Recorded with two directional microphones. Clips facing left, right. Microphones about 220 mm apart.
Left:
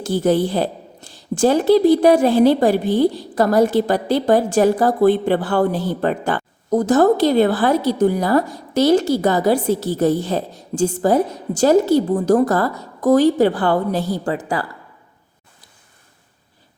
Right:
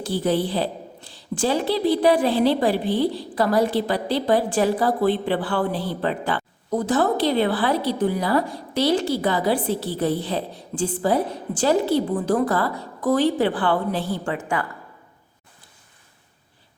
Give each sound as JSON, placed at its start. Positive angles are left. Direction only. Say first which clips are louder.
{"t": 0.0, "sound": "a woman's voice", "louder": "left 5 dB", "side_deg": 45}